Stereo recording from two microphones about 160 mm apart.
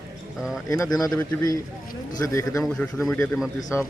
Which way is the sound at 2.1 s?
20° left (ahead or behind).